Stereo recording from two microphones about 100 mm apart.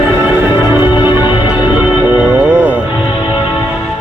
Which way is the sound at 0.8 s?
50° left (ahead or behind).